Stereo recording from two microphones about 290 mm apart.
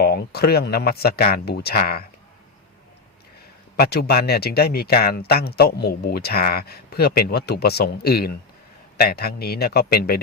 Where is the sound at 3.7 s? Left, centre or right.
Left.